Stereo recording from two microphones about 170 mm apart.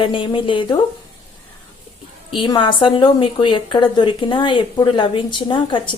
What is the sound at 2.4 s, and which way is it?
A woman's voice, 30° left (ahead or behind).